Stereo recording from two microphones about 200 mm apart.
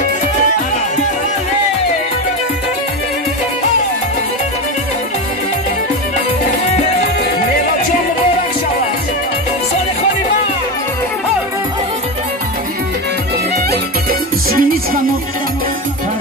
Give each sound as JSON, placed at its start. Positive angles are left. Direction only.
{"t": 14.5, "sound": "music", "side_deg": -45}